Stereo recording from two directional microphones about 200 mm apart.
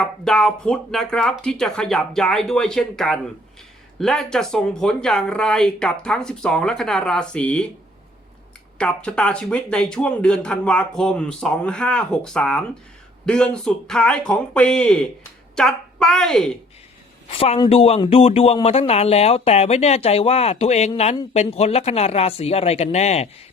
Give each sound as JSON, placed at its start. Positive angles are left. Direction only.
{"t": 0.0, "sound": "speech", "side_deg": 5}
{"t": 8.8, "sound": "a woman's voice", "side_deg": 5}
{"t": 17.2, "sound": "a man's voice", "side_deg": 30}